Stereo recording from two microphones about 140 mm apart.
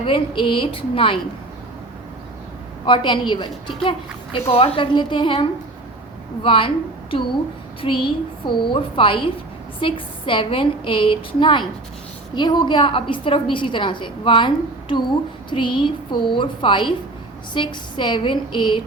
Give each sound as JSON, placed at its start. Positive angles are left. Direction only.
{"t": 0.0, "sound": "a woman's voice", "side_deg": 40}
{"t": 2.8, "sound": "a woman's voice", "side_deg": 35}
{"t": 7.8, "sound": "a woman's voice", "side_deg": 40}